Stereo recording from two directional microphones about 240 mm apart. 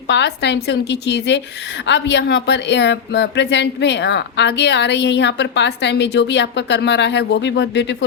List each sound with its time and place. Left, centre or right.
0.1 s speech: left